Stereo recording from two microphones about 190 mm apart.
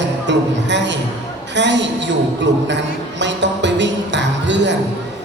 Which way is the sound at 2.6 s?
70° right (ahead or behind).